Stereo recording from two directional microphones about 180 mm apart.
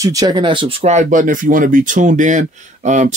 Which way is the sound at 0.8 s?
45° right (ahead or behind).